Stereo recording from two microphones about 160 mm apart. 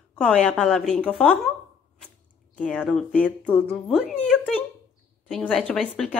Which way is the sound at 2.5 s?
5° left (ahead or behind).